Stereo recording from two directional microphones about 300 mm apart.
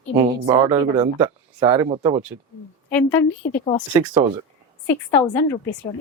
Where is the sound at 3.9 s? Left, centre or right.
Centre.